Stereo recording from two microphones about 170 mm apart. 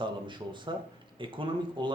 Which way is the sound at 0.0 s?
30° right (ahead or behind).